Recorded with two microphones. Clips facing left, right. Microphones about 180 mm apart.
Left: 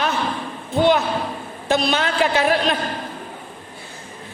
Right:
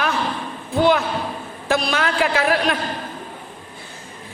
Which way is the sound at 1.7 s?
25° left (ahead or behind).